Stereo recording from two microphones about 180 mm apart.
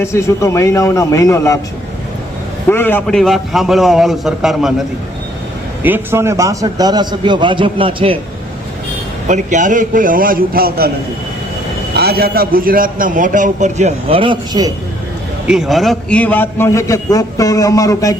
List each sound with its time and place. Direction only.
0.0 s a man's voice: 15° left (ahead or behind)
2.6 s a man's voice: 10° left (ahead or behind)
5.8 s a man's voice: 10° right (ahead or behind); by 8.2 s 30° right (ahead or behind)
9.2 s a man's voice: 40° right (ahead or behind); by 10.9 s 55° right (ahead or behind)
11.9 s a man's voice: 60° right (ahead or behind); by 14.7 s 25° right (ahead or behind)
15.4 s a man's voice: centre (ahead or behind); by 18.2 s 20° left (ahead or behind)